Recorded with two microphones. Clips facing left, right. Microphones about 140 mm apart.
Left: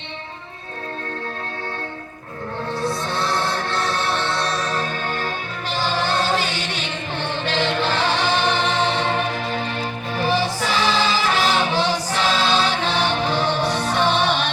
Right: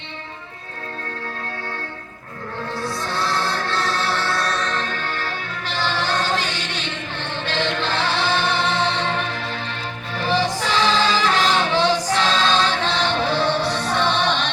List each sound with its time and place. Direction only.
2.8 s music: 20° left (ahead or behind)
4.8 s music: 15° left (ahead or behind)